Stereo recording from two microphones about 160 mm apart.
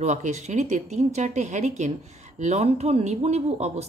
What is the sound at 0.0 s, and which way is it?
Speech, 45° right (ahead or behind).